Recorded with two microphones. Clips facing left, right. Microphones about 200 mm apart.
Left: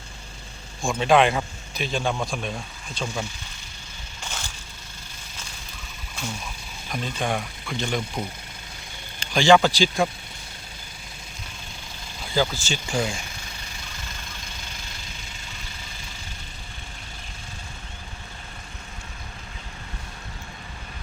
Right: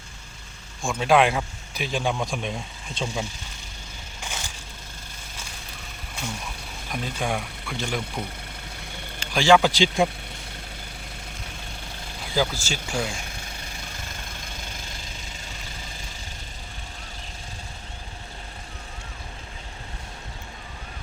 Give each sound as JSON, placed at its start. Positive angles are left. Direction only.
{"t": 0.8, "sound": "speech", "side_deg": -5}
{"t": 4.2, "sound": "crushing", "side_deg": -15}
{"t": 6.9, "sound": "speech", "side_deg": -10}
{"t": 9.2, "sound": "speech", "side_deg": -5}
{"t": 12.3, "sound": "speech", "side_deg": -10}
{"t": 13.1, "sound": "engine knocking", "side_deg": -60}